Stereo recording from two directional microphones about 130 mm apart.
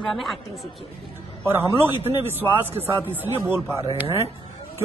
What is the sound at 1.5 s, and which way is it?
A man's voice, 20° right (ahead or behind).